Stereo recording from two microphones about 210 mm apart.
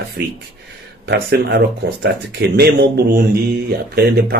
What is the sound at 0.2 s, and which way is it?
Speech, 50° right (ahead or behind).